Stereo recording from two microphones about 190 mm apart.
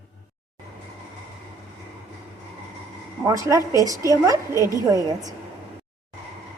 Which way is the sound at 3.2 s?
15° right (ahead or behind).